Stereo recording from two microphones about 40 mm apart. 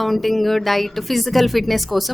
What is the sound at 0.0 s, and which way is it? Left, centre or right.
A woman's voice, centre.